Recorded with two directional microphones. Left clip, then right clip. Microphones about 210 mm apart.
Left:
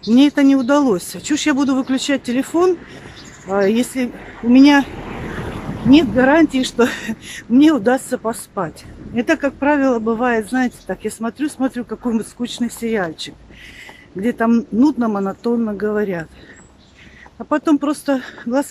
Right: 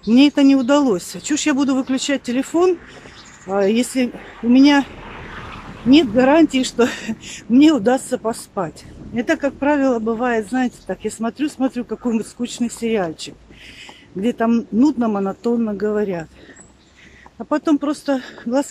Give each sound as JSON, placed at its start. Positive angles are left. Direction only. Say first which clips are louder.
{"t": 0.1, "sound": "speech", "louder": "even", "side_deg": -5}
{"t": 5.0, "sound": "a sound", "louder": "left 5 dB", "side_deg": 25}
{"t": 5.9, "sound": "speech", "louder": "left 1 dB", "side_deg": 0}
{"t": 17.4, "sound": "speech", "louder": "left 2 dB", "side_deg": 0}